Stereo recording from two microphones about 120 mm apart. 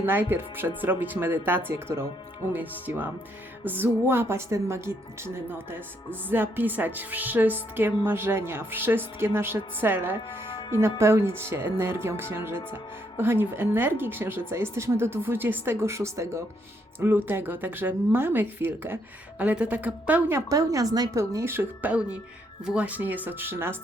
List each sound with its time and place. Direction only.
0.0 s a woman's voice: 15° right (ahead or behind)